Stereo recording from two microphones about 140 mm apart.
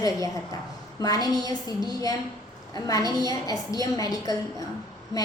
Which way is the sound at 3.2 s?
25° left (ahead or behind).